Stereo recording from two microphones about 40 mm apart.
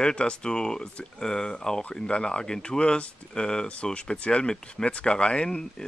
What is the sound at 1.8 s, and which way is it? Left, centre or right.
Speech, left.